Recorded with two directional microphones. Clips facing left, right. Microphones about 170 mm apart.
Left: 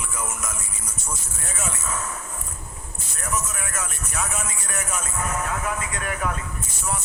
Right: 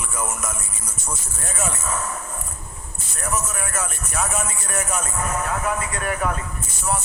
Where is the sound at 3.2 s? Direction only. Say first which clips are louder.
Right 3 dB; 45° right (ahead or behind).